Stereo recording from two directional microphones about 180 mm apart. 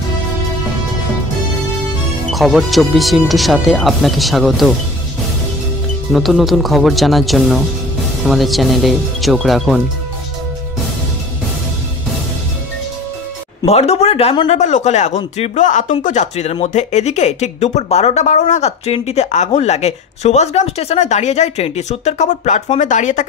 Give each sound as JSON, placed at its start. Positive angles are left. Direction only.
{"t": 2.3, "sound": "speech", "side_deg": 0}
{"t": 6.1, "sound": "speech", "side_deg": 0}
{"t": 13.7, "sound": "speech", "side_deg": 35}
{"t": 14.5, "sound": "speech", "side_deg": 40}